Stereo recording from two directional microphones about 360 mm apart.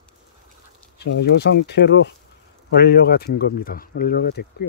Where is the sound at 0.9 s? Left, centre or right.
Left.